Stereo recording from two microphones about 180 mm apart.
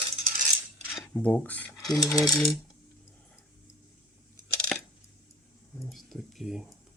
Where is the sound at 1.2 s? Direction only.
10° left (ahead or behind).